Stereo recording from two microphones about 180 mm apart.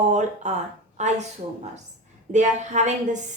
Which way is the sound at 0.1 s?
40° right (ahead or behind).